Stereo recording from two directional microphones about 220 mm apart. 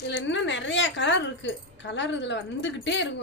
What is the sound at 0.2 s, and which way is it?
A woman's voice, 55° left (ahead or behind).